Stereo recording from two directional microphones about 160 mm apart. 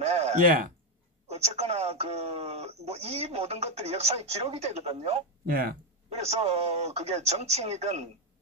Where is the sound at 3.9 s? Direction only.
40° right (ahead or behind).